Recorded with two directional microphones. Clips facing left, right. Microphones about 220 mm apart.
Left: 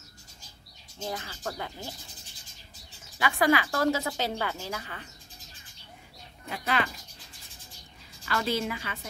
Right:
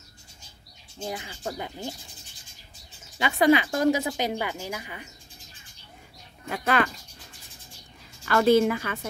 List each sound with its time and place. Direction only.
1.0 s speech: 15° right (ahead or behind)
3.2 s speech: 20° right (ahead or behind)
6.5 s a woman's voice: 50° right (ahead or behind)
8.3 s a woman's voice: 50° right (ahead or behind)